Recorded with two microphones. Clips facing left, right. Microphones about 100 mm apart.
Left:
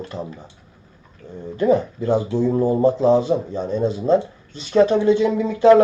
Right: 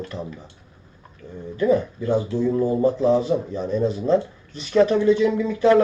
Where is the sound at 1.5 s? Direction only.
25° left (ahead or behind).